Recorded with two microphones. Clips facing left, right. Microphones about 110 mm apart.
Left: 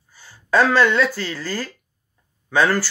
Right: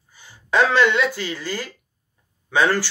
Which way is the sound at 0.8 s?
15° right (ahead or behind).